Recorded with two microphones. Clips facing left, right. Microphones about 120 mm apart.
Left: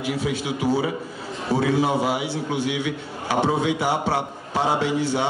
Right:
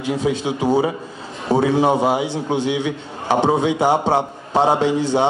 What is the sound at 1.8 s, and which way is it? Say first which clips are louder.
A man's voice: right 5 dB; 25° right (ahead or behind).